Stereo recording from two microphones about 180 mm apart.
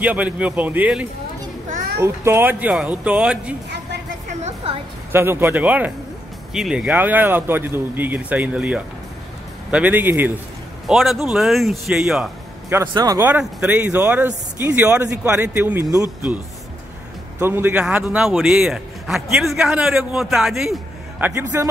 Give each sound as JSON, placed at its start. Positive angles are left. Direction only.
{"t": 0.0, "sound": "speech", "side_deg": -10}
{"t": 4.3, "sound": "music", "side_deg": -40}
{"t": 5.1, "sound": "a man's voice", "side_deg": -15}
{"t": 12.6, "sound": "speech", "side_deg": -15}
{"t": 17.4, "sound": "a man's voice", "side_deg": -10}
{"t": 21.4, "sound": "speech", "side_deg": -10}